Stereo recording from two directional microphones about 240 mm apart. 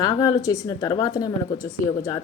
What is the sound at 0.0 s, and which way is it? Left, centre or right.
A woman's voice, centre.